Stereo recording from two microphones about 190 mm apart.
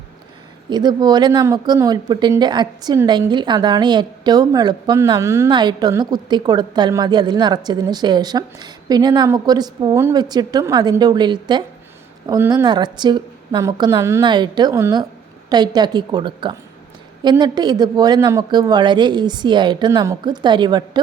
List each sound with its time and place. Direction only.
0.7 s speech: 20° right (ahead or behind)